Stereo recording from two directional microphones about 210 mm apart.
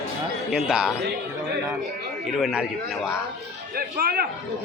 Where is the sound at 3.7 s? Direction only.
45° right (ahead or behind).